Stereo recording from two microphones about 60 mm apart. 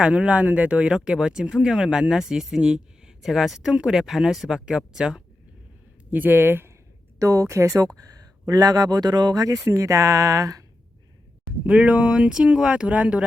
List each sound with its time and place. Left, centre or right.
0.0 s speech: centre
6.1 s speech: right
7.2 s speech: right
7.9 s speech: right
9.6 s speech: right
11.6 s speech: right